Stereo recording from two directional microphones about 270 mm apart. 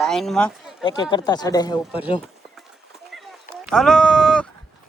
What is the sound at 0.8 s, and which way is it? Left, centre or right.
Speech, centre.